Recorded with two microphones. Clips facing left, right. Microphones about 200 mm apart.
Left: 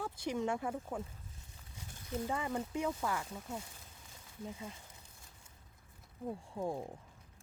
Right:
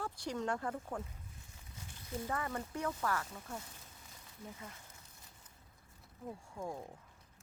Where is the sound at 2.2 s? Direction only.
15° left (ahead or behind).